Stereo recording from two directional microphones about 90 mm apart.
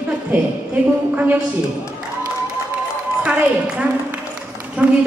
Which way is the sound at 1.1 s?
20° right (ahead or behind).